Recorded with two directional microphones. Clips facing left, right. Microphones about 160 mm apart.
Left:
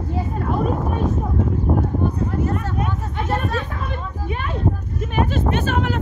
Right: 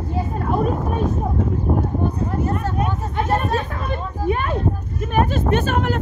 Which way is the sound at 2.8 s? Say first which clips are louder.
Right 3 dB; 45° right (ahead or behind).